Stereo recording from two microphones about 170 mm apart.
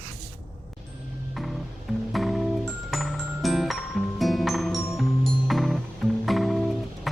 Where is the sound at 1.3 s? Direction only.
Centre (ahead or behind).